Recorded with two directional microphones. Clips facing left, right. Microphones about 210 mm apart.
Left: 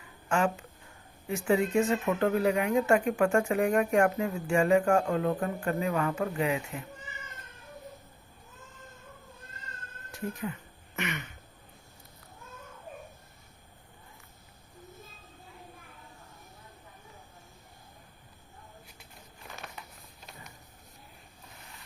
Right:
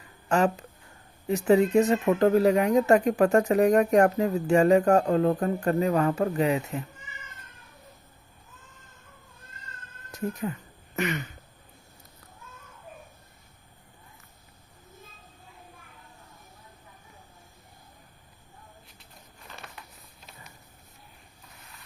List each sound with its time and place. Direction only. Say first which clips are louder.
0.3 s speech: right 4 dB; 40° right (ahead or behind)
10.1 s speech: right 4 dB; 40° right (ahead or behind)